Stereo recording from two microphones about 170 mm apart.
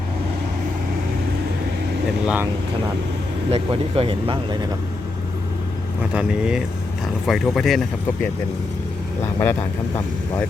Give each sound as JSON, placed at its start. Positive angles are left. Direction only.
{"t": 2.2, "sound": "speech", "side_deg": -10}
{"t": 3.5, "sound": "speech", "side_deg": -35}
{"t": 6.1, "sound": "speech", "side_deg": -5}
{"t": 9.4, "sound": "speech", "side_deg": 10}